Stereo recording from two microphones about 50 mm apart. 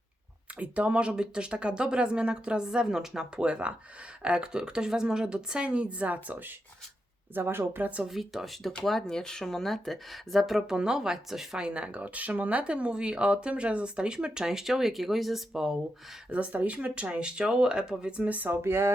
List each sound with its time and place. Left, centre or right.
0.6 s a woman's voice: right
7.3 s speech: right
7.8 s speech: right
8.0 s speech: centre
10.7 s a woman's voice: centre
11.5 s speech: right; by 15.4 s centre
15.5 s a woman's voice: centre
16.3 s speech: right
18.3 s speech: right
18.5 s speech: right